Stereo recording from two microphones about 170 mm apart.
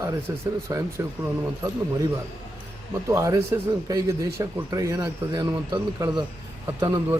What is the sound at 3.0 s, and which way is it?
A man's voice, 20° right (ahead or behind).